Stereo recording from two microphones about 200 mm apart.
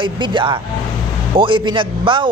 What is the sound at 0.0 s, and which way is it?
Speech, 25° right (ahead or behind).